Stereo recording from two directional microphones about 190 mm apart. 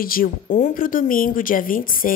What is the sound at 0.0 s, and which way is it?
A woman's voice, 50° left (ahead or behind).